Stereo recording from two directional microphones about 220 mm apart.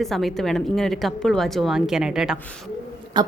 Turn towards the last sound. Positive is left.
turn(degrees=-20)  # may be behind; listen again after turning